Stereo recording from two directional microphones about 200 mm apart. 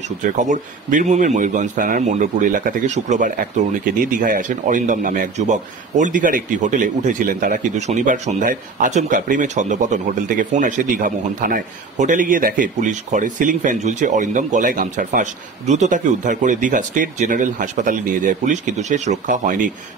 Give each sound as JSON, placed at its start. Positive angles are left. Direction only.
{"t": 0.0, "sound": "speech", "side_deg": -40}